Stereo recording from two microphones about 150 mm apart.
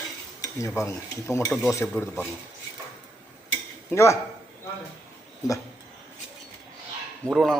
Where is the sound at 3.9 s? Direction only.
20° left (ahead or behind).